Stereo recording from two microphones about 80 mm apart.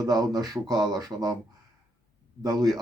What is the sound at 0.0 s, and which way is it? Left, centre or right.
A man's voice, right.